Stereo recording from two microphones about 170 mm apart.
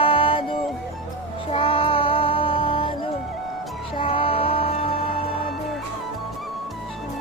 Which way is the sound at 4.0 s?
30° left (ahead or behind).